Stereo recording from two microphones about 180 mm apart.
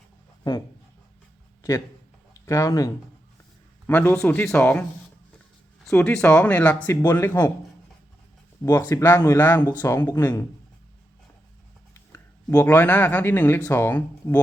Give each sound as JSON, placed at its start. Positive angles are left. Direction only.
{"t": 2.5, "sound": "speech", "side_deg": 20}
{"t": 5.9, "sound": "speech", "side_deg": 10}
{"t": 8.9, "sound": "speech", "side_deg": 15}
{"t": 12.1, "sound": "speech", "side_deg": 15}